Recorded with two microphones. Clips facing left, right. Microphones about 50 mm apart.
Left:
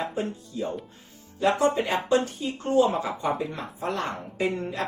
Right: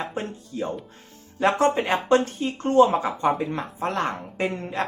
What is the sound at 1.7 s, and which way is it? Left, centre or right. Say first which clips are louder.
Speech: right 3 dB; right.